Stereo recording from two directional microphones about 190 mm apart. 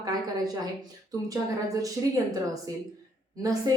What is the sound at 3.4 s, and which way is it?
Speech, 20° right (ahead or behind).